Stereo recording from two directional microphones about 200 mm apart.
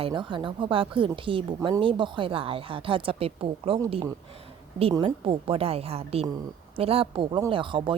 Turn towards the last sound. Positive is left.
turn(degrees=-25)  # may be behind; listen again after turning